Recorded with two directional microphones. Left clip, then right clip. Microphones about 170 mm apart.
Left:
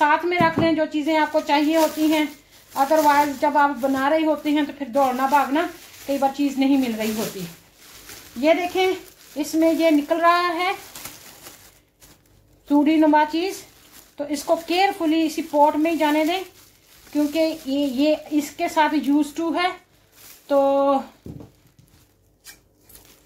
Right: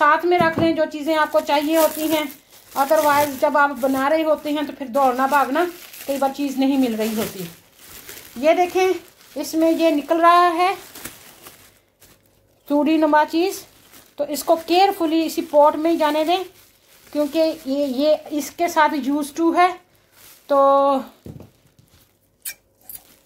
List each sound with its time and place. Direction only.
0.0 s a woman's voice: 45° right (ahead or behind)
8.4 s speech: 50° right (ahead or behind)
12.6 s speech: 45° right (ahead or behind)